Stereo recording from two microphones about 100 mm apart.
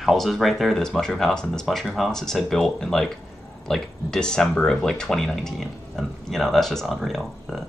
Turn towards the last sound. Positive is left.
turn(degrees=0)  # may be behind; listen again after turning